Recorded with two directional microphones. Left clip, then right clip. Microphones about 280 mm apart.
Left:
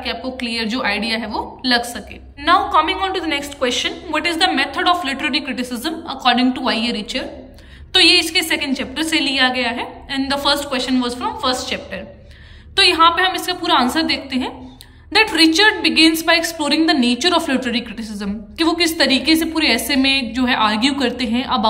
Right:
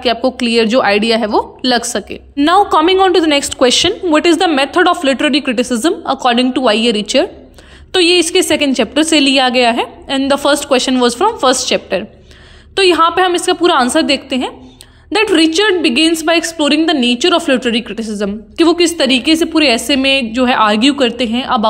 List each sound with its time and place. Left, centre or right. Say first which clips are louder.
0.0 s a woman's voice: right 10 dB; centre